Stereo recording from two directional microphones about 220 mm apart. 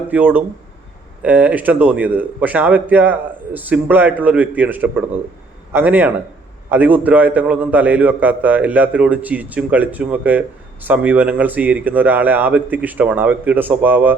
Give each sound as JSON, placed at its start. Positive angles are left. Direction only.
{"t": 0.1, "sound": "a man's voice", "side_deg": -10}